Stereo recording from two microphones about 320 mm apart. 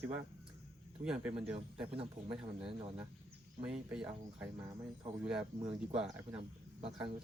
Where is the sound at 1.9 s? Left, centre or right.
Centre.